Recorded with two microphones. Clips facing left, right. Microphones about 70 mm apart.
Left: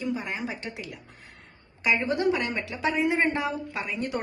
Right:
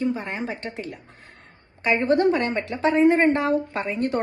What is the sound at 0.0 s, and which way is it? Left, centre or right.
A woman's voice, right.